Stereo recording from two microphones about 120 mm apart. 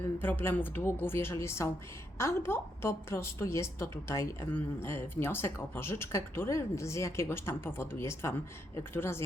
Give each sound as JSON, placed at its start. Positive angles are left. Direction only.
{"t": 0.2, "sound": "a woman's voice", "side_deg": 15}